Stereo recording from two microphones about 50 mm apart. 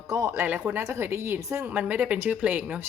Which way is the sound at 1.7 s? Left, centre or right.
Right.